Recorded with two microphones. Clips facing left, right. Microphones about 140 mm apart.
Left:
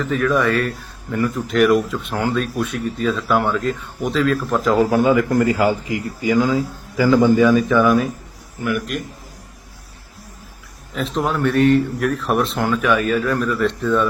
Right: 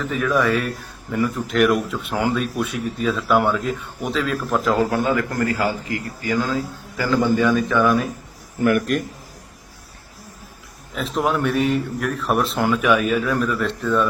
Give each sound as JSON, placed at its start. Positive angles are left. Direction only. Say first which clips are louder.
{"t": 0.0, "sound": "speech", "louder": "left 2 dB", "side_deg": -5}
{"t": 4.9, "sound": "a man's voice", "louder": "left 5 dB", "side_deg": 10}
{"t": 7.4, "sound": "speech", "louder": "left 3 dB", "side_deg": 0}
{"t": 8.6, "sound": "a man's voice", "louder": "right 4 dB", "side_deg": -50}
{"t": 10.9, "sound": "speech", "louder": "even", "side_deg": -5}